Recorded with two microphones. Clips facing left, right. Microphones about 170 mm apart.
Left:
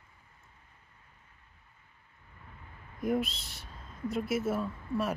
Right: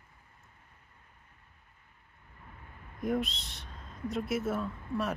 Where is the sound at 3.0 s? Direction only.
5° left (ahead or behind).